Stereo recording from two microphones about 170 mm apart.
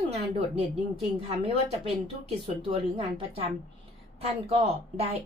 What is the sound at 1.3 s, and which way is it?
Speech, 35° right (ahead or behind).